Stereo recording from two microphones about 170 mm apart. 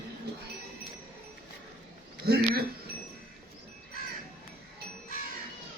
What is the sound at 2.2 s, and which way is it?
Speech, 65° right (ahead or behind).